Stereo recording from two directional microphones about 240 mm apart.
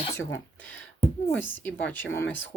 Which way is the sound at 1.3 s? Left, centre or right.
Centre.